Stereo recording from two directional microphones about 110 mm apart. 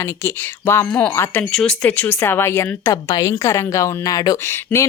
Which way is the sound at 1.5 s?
10° left (ahead or behind).